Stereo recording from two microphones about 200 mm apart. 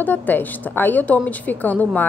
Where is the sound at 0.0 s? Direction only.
10° left (ahead or behind).